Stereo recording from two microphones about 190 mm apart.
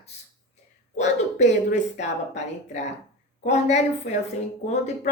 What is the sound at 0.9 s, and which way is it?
A woman's voice, 35° left (ahead or behind).